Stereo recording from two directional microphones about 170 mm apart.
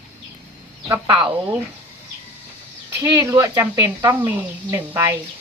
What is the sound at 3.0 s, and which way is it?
Speech, 20° right (ahead or behind).